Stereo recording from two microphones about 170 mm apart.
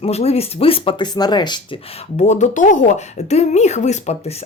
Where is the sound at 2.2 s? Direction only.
45° left (ahead or behind).